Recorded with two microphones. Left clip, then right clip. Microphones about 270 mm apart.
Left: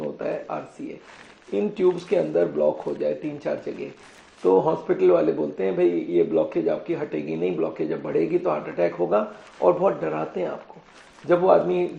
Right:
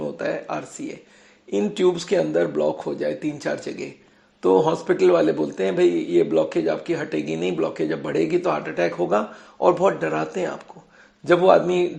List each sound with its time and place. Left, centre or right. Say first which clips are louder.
0.2 s a man's voice: right 2 dB; right